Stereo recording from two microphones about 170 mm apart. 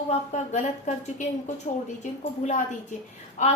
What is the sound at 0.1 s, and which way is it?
Speech, 40° left (ahead or behind).